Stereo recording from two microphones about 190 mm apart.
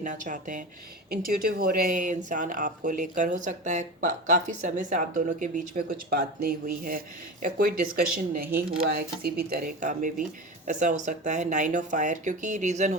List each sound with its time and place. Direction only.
0.0 s speech: 40° right (ahead or behind)